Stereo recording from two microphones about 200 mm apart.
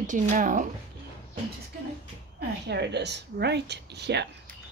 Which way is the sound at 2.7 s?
55° right (ahead or behind).